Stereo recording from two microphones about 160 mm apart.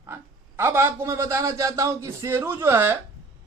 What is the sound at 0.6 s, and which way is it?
A woman's voice, 15° right (ahead or behind).